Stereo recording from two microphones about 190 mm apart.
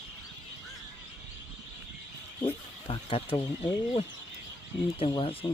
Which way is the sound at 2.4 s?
30° left (ahead or behind).